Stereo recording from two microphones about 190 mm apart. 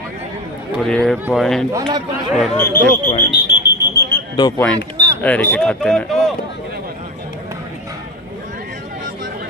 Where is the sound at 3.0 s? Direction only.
45° left (ahead or behind).